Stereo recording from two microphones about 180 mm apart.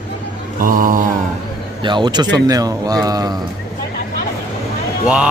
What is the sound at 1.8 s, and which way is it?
Speech, 25° right (ahead or behind).